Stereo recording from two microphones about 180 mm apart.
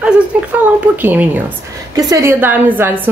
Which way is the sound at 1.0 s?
10° right (ahead or behind).